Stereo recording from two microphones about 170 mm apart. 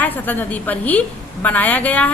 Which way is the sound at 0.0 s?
10° left (ahead or behind).